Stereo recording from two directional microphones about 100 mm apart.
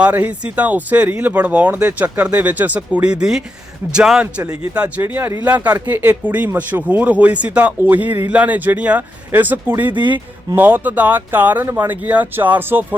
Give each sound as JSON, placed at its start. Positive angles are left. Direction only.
{"t": 0.0, "sound": "speech", "side_deg": -15}
{"t": 9.9, "sound": "speech", "side_deg": -50}
{"t": 10.5, "sound": "speech", "side_deg": -20}